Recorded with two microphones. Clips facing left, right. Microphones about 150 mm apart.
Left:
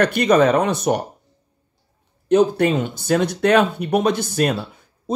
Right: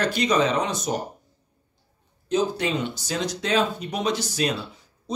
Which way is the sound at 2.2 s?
60° left (ahead or behind).